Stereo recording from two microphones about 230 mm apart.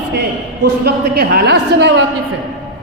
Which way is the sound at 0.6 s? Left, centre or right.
Right.